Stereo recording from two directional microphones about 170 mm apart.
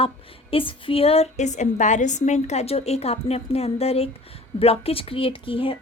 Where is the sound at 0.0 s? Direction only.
30° left (ahead or behind).